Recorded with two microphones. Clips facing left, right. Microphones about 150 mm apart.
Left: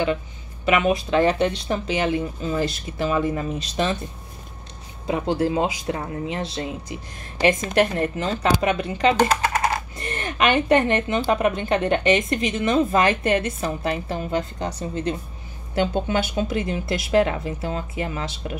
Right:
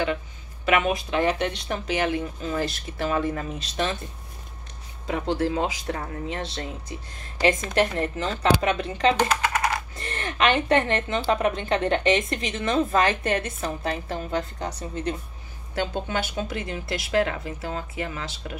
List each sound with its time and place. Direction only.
0.7 s speech: 25° left (ahead or behind)
5.0 s a woman's voice: 15° left (ahead or behind)
9.3 s typing: 30° left (ahead or behind)
9.9 s a woman's voice: 15° left (ahead or behind)
15.7 s speech: 20° left (ahead or behind)